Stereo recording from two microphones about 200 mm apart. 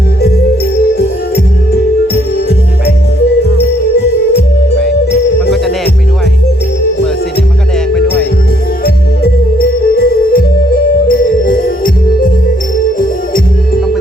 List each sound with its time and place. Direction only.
8.8 s music: 50° left (ahead or behind)